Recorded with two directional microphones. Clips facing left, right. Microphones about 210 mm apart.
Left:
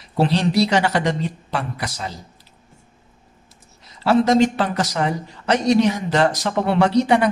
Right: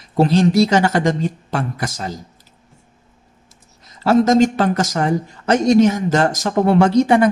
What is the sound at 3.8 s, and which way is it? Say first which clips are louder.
Speech: right 3 dB; 45° right (ahead or behind).